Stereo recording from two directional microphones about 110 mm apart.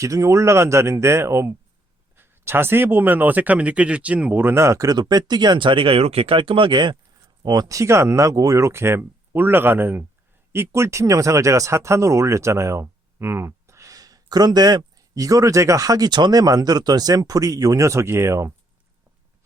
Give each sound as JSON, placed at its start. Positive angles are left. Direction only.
{"t": 0.0, "sound": "speech", "side_deg": -30}